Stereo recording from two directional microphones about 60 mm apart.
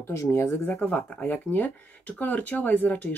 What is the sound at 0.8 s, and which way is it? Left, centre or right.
Speech, left.